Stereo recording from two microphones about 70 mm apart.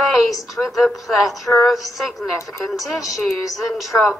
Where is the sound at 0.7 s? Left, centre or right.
Centre.